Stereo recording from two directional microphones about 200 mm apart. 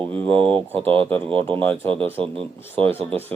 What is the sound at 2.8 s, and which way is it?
Speech, 30° right (ahead or behind).